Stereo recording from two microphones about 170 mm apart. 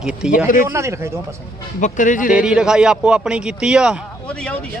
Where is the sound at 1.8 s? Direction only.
50° left (ahead or behind).